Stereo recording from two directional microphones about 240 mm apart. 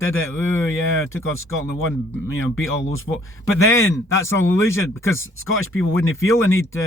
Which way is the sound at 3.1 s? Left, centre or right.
Left.